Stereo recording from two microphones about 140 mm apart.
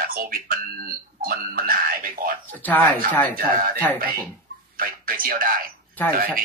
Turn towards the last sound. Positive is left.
turn(degrees=-90)